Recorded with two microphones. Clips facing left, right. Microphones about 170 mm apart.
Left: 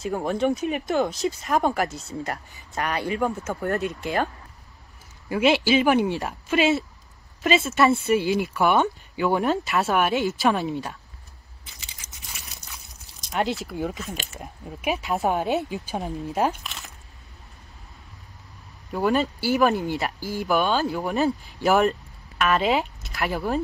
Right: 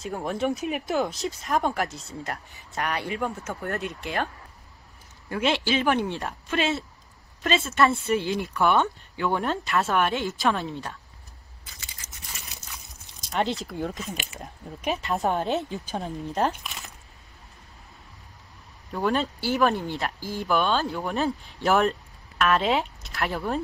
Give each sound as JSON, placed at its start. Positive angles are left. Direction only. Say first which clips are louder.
{"t": 0.3, "sound": "speech", "louder": "left 3 dB", "side_deg": 0}
{"t": 5.3, "sound": "speech", "louder": "left 5 dB", "side_deg": 5}
{"t": 11.6, "sound": "a sound", "louder": "even", "side_deg": 20}
{"t": 13.3, "sound": "speech", "louder": "left 1 dB", "side_deg": 5}
{"t": 18.9, "sound": "speech", "louder": "left 3 dB", "side_deg": 5}